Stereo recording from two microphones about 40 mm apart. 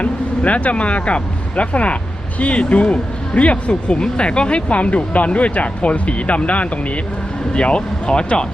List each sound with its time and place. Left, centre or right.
0.0 s speech: left